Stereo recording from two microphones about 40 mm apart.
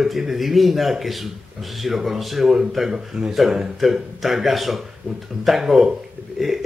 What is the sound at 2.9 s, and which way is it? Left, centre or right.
A man's voice, centre.